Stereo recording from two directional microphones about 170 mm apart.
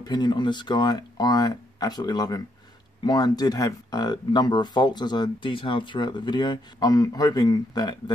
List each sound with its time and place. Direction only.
0.0 s speech: 25° left (ahead or behind)